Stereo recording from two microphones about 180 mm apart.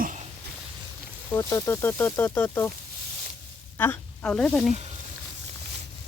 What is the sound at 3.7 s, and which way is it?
Speech, 10° left (ahead or behind).